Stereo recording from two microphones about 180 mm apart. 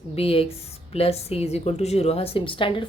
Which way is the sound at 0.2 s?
35° left (ahead or behind).